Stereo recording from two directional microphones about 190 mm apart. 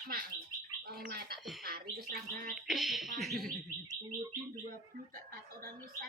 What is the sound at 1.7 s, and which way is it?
Bird, 50° right (ahead or behind).